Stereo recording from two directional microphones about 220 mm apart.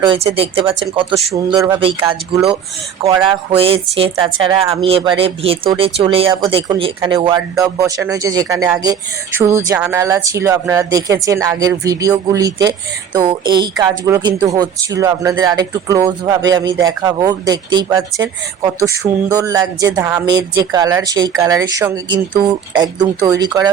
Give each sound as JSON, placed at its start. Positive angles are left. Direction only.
{"t": 0.0, "sound": "a woman's voice", "side_deg": -25}